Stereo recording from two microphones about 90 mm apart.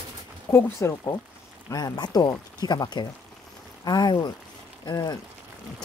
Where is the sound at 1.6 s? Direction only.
45° left (ahead or behind).